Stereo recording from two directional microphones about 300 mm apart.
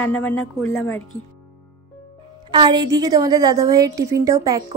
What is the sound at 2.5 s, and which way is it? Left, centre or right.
A woman's voice, centre.